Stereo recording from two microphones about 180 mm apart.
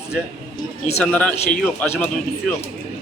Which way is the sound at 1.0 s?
5° left (ahead or behind).